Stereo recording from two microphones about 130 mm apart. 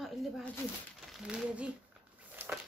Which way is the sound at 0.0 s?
Centre (ahead or behind).